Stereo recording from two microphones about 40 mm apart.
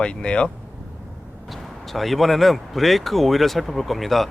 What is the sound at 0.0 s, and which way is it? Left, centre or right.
Speech, left.